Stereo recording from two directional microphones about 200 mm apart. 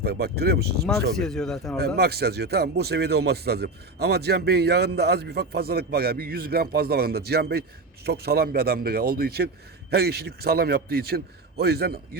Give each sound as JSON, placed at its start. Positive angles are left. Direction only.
{"t": 0.0, "sound": "speech", "side_deg": -50}
{"t": 0.9, "sound": "speech", "side_deg": 5}
{"t": 2.0, "sound": "speech", "side_deg": -50}